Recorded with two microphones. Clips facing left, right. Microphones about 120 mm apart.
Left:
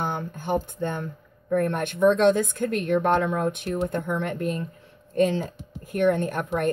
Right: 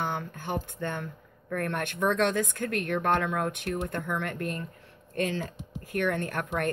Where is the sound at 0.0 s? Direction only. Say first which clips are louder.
Left 3 dB; 40° left (ahead or behind).